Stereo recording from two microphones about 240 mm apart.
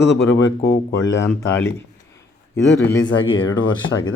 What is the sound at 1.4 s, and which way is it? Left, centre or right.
Speech, centre.